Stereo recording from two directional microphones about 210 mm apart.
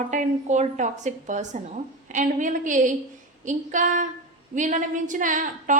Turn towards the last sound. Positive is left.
turn(degrees=-40)  # may be behind; listen again after turning